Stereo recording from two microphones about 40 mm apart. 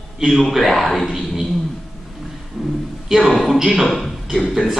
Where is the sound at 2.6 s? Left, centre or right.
Centre.